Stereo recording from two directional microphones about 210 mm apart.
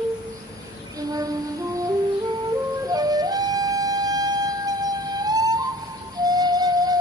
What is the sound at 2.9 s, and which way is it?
Music, 20° right (ahead or behind).